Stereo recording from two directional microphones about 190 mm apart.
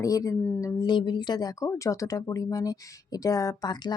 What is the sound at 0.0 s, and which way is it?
Speech, 20° left (ahead or behind).